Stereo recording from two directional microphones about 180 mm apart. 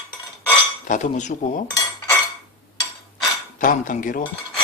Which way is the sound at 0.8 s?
45° left (ahead or behind).